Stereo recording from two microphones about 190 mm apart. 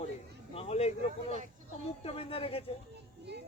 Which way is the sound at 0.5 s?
35° left (ahead or behind).